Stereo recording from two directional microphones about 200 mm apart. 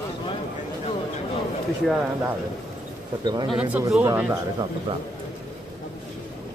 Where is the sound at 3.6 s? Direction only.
10° right (ahead or behind).